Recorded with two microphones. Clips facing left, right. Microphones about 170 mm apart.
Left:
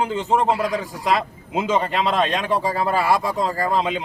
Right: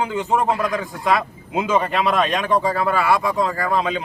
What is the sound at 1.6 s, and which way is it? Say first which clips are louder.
Speech: right 1 dB; 25° left (ahead or behind).